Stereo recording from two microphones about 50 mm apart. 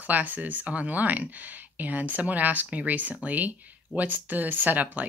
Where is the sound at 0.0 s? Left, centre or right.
Right.